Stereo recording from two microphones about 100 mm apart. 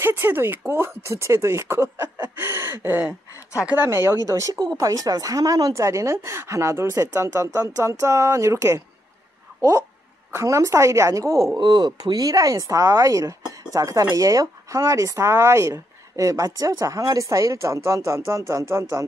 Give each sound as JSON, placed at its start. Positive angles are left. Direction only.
{"t": 0.0, "sound": "speech", "side_deg": -25}
{"t": 11.5, "sound": "speech", "side_deg": -45}